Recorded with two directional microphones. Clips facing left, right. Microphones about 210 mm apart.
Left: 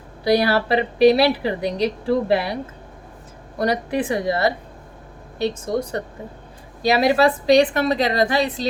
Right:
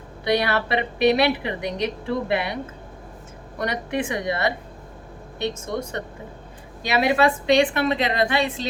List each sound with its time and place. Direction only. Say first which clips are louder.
0.3 s speech: left 4 dB; 35° left (ahead or behind)
3.6 s speech: left 4 dB; 35° left (ahead or behind)